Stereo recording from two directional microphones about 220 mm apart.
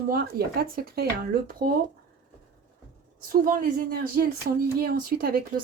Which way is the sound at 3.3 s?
40° right (ahead or behind).